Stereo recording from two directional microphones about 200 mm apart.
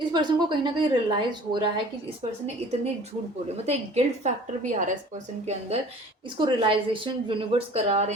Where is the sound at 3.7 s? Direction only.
35° right (ahead or behind).